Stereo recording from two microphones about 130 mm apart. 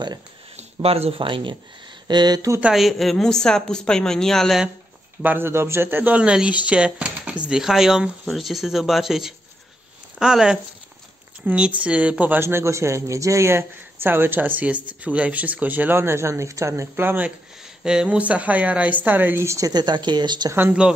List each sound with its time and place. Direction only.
0.6 s speech: 50° right (ahead or behind); by 2.6 s 30° right (ahead or behind)
2.6 s speech: centre (ahead or behind)
5.2 s speech: 15° right (ahead or behind); by 20.5 s 35° right (ahead or behind)
20.5 s speech: 10° right (ahead or behind)